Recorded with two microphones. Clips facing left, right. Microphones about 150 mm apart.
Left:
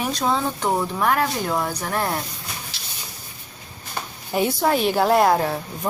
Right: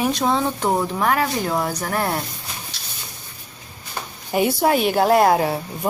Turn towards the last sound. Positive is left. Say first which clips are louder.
# right 2 dB
turn(degrees=-10)  # may be behind; listen again after turning